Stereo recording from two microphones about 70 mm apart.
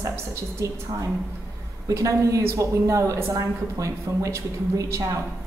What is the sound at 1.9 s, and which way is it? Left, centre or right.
A woman's voice, right.